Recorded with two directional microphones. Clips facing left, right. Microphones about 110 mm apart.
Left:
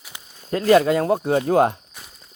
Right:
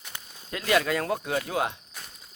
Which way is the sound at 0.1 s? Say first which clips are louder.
Even; 10° left (ahead or behind).